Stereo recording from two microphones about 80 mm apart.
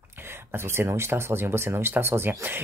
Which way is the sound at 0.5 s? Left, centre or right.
Right.